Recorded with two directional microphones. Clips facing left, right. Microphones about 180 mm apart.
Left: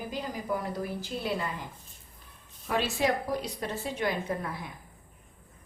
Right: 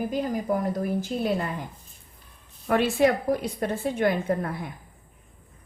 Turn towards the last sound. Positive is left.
turn(degrees=-50)  # may be behind; listen again after turning